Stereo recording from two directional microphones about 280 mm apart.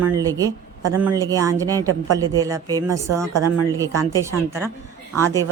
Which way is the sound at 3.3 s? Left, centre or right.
Right.